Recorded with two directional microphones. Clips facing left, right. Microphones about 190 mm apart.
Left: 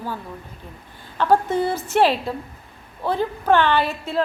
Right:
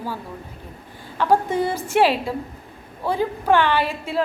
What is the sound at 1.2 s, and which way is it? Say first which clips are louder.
A woman's voice: left 1 dB; 10° right (ahead or behind).